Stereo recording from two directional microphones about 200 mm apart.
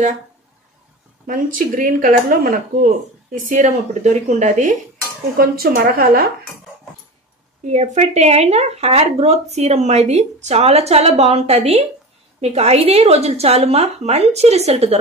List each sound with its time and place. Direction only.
1.2 s speech: 40° right (ahead or behind)
5.4 s speech: 45° right (ahead or behind)
7.6 s speech: 35° right (ahead or behind)